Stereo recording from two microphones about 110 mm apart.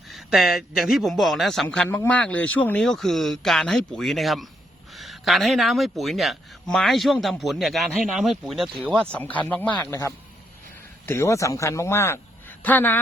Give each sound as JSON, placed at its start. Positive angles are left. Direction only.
{"t": 0.1, "sound": "speech", "side_deg": 0}
{"t": 2.8, "sound": "speech", "side_deg": 5}
{"t": 9.1, "sound": "speech", "side_deg": 10}
{"t": 9.8, "sound": "a man's voice", "side_deg": 30}